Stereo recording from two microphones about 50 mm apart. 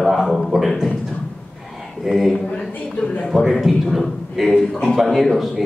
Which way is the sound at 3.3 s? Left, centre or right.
Centre.